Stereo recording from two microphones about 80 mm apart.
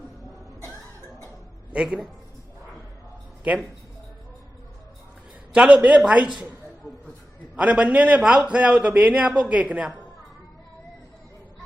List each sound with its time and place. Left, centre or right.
1.7 s a man's voice: centre
5.5 s a man's voice: centre
7.5 s a man's voice: centre